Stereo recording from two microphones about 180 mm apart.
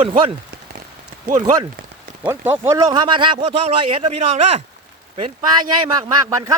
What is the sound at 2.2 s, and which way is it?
A man's voice, 10° right (ahead or behind).